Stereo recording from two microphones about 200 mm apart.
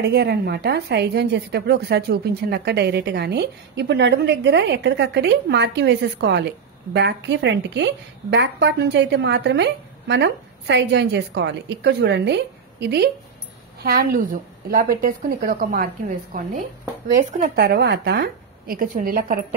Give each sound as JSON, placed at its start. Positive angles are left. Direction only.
{"t": 0.0, "sound": "a woman's voice", "side_deg": -55}